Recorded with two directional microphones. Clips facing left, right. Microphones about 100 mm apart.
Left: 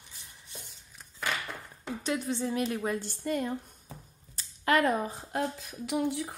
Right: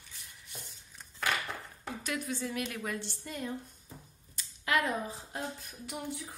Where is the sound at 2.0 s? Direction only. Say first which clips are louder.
Left 5 dB; 30° left (ahead or behind).